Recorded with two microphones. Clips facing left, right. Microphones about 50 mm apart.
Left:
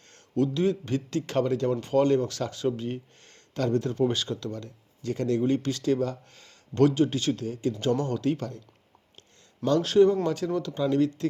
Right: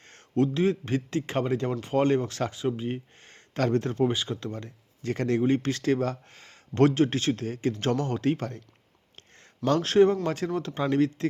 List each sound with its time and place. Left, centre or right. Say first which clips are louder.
0.0 s speech: right 1 dB; right
4.0 s speech: even; centre; by 8.6 s right
9.6 s speech: even; right